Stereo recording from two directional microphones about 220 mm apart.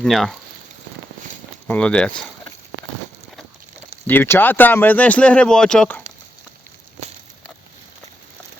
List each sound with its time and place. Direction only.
0.0 s speech: centre (ahead or behind)
1.6 s speech: 5° left (ahead or behind)
4.0 s speech: 10° left (ahead or behind)